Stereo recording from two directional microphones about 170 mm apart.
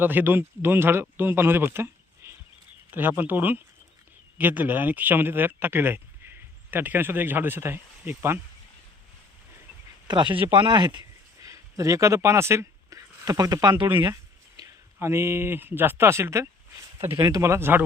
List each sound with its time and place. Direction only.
0.0 s speech: 10° right (ahead or behind)
10.1 s speech: 25° right (ahead or behind)